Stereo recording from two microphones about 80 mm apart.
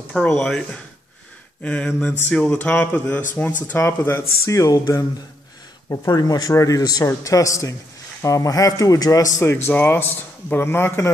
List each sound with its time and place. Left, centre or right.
0.1 s a sound: centre
3.7 s speech: left
5.9 s speech: left
7.2 s speech: left
9.4 s speech: left